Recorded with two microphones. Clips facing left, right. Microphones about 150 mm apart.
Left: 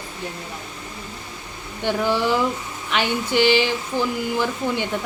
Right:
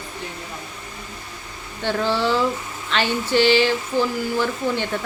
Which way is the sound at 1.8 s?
15° left (ahead or behind).